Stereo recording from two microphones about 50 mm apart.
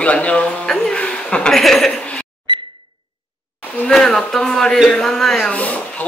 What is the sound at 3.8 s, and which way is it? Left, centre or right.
Speech, centre.